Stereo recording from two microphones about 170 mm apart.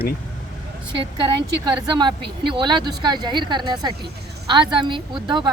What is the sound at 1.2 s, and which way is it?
Speech, 25° right (ahead or behind).